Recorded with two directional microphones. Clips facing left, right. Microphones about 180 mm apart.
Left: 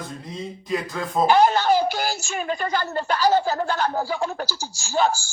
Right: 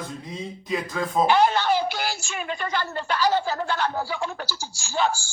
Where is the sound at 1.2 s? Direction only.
40° left (ahead or behind).